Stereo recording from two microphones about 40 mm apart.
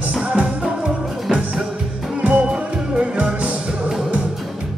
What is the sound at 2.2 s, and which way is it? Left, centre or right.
Music, right.